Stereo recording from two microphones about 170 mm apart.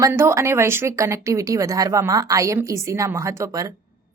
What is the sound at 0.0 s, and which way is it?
A woman's voice, 15° right (ahead or behind).